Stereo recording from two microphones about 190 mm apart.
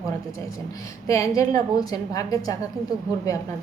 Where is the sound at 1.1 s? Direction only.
15° left (ahead or behind).